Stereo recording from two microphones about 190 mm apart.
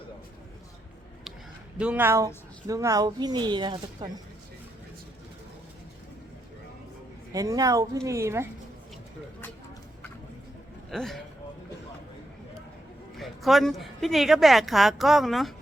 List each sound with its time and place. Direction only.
1.8 s speech: 10° right (ahead or behind); by 4.1 s 25° right (ahead or behind)
7.3 s speech: 20° right (ahead or behind)
10.9 s speech: centre (ahead or behind)
13.1 s speech: centre (ahead or behind)